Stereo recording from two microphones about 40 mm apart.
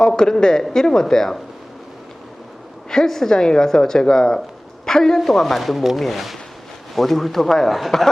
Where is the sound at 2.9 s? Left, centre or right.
Centre.